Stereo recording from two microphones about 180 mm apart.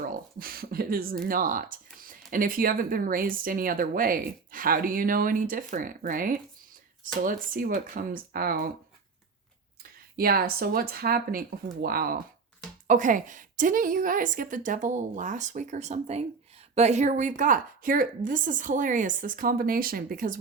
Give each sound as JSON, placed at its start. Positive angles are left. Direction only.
{"t": 0.0, "sound": "speech", "side_deg": -50}
{"t": 10.2, "sound": "speech", "side_deg": -55}